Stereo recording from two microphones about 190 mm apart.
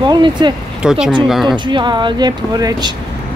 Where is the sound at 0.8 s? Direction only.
5° right (ahead or behind).